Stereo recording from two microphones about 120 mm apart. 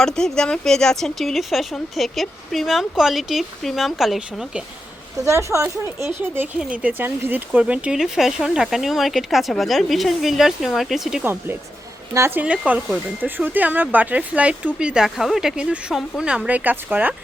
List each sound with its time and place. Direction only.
0.0 s speech: 5° left (ahead or behind)
5.2 s speech: 25° right (ahead or behind); by 11.2 s centre (ahead or behind)
11.2 s speech: 15° right (ahead or behind)